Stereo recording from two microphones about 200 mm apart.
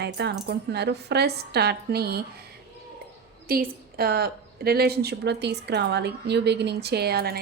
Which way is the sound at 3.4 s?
50° right (ahead or behind).